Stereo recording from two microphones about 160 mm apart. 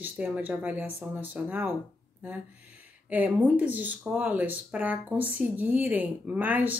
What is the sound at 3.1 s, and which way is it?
Speech, 10° right (ahead or behind).